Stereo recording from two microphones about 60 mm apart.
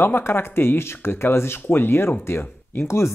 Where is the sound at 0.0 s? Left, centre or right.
Left.